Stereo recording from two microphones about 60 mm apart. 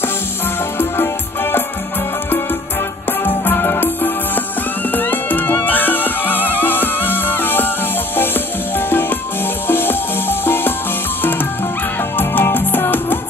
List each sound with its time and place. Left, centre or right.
0.7 s music: left
3.3 s music: left
9.7 s music: left
12.2 s music: left